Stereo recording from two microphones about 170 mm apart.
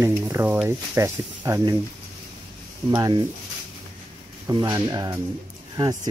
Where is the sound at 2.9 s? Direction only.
20° right (ahead or behind).